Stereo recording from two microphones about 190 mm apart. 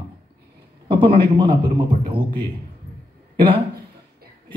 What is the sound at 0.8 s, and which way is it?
Speech, 25° right (ahead or behind).